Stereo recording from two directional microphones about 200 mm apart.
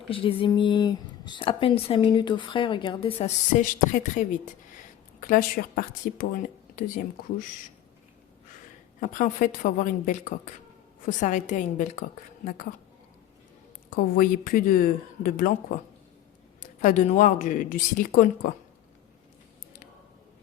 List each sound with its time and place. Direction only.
0.1 s speech: 25° left (ahead or behind); by 7.4 s 45° left (ahead or behind)
9.0 s a woman's voice: 40° left (ahead or behind)
13.9 s a woman's voice: 45° left (ahead or behind)